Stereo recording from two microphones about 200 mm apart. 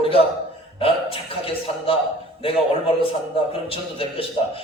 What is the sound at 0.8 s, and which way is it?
A man's voice, 30° left (ahead or behind).